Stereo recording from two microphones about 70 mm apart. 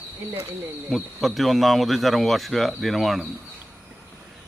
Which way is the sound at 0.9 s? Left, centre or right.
Centre.